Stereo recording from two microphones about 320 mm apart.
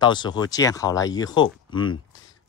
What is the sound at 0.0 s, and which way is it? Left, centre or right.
Speech, centre.